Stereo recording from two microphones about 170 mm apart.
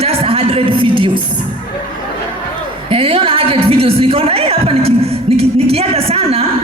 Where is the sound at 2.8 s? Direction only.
35° right (ahead or behind).